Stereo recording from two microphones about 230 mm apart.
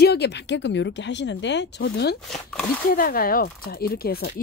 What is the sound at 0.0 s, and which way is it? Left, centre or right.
Speech, left.